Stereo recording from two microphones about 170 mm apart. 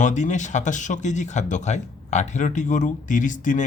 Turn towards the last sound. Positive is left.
turn(degrees=50)  # may be behind; listen again after turning